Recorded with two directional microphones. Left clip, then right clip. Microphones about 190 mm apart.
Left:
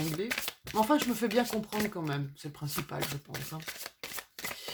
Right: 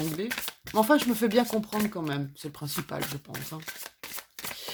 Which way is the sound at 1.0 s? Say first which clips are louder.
Right 4 dB; 45° right (ahead or behind).